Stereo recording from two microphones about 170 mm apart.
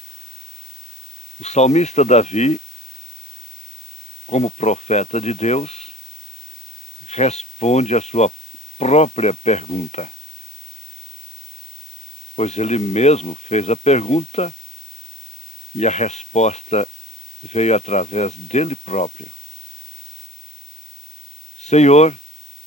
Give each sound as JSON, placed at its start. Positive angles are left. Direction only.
{"t": 1.4, "sound": "speech", "side_deg": 40}
{"t": 4.3, "sound": "speech", "side_deg": 40}
{"t": 7.1, "sound": "speech", "side_deg": 40}
{"t": 12.4, "sound": "speech", "side_deg": 40}
{"t": 15.8, "sound": "speech", "side_deg": 40}
{"t": 21.6, "sound": "speech", "side_deg": 40}